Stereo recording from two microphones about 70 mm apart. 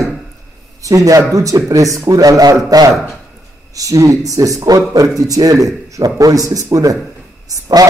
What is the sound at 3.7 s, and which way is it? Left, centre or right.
A man's voice, right.